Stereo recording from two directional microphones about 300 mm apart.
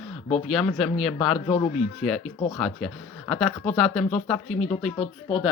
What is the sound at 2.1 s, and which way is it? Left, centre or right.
Speech, centre.